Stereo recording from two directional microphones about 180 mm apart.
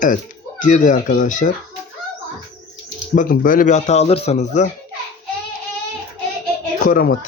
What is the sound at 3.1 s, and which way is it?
Speech, 50° left (ahead or behind).